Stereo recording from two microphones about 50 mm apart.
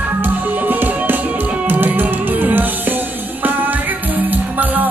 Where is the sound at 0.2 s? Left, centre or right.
Right.